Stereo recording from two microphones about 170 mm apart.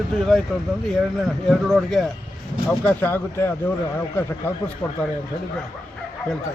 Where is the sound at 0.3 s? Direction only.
Centre (ahead or behind).